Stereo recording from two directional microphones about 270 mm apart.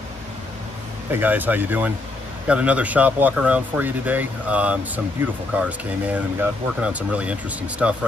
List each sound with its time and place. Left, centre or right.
1.2 s speech: centre